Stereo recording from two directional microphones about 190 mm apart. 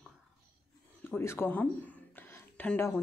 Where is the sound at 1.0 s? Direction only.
10° left (ahead or behind).